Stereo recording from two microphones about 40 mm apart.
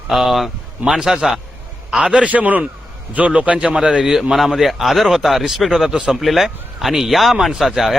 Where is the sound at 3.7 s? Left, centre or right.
Centre.